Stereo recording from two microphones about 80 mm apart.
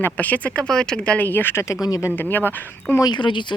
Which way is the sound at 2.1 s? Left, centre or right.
Left.